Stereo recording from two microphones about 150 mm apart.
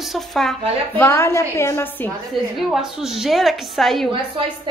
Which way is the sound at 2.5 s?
Centre (ahead or behind).